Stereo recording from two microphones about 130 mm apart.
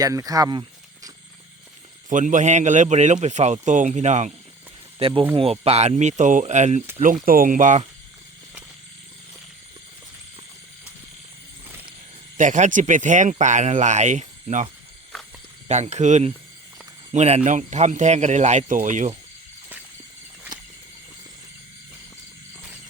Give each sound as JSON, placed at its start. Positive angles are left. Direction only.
{"t": 0.0, "sound": "speech", "side_deg": -25}
{"t": 2.0, "sound": "speech", "side_deg": -75}
{"t": 4.9, "sound": "speech", "side_deg": -45}
{"t": 7.3, "sound": "speech", "side_deg": -90}
{"t": 11.7, "sound": "vehicle", "side_deg": -15}
{"t": 12.4, "sound": "speech", "side_deg": -70}